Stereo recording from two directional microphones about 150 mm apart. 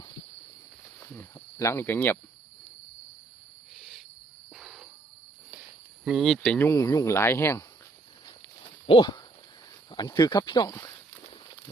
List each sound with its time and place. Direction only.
0.9 s cricket: 15° left (ahead or behind)
3.8 s cricket: centre (ahead or behind)
6.1 s speech: centre (ahead or behind); by 7.6 s 15° left (ahead or behind)
8.9 s speech: 30° left (ahead or behind)
10.7 s speech: 15° left (ahead or behind)
11.3 s a sound: 30° left (ahead or behind)